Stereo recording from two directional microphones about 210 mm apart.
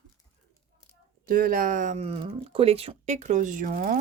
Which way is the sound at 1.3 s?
45° right (ahead or behind).